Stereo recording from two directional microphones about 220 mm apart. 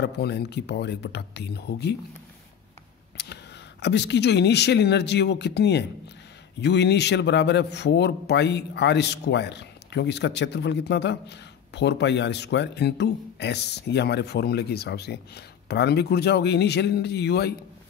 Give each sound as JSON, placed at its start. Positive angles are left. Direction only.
{"t": 0.0, "sound": "a man's voice", "side_deg": 50}
{"t": 3.2, "sound": "a sound", "side_deg": 50}
{"t": 3.8, "sound": "a man's voice", "side_deg": 50}